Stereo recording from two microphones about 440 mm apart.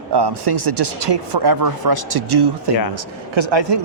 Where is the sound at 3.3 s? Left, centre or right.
Right.